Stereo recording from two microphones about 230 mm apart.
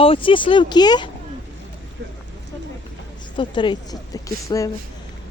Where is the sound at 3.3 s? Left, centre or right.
Centre.